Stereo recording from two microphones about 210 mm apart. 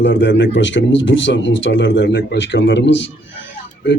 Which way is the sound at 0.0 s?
60° left (ahead or behind).